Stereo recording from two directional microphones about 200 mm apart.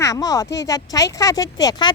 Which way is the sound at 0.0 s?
20° left (ahead or behind).